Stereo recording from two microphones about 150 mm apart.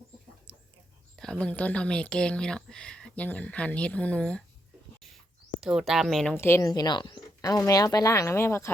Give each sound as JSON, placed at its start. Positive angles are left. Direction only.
{"t": 0.5, "sound": "a sound", "side_deg": -10}
{"t": 1.1, "sound": "speech", "side_deg": 5}
{"t": 5.5, "sound": "speech", "side_deg": -5}
{"t": 6.3, "sound": "speech", "side_deg": 15}
{"t": 6.7, "sound": "speech", "side_deg": 30}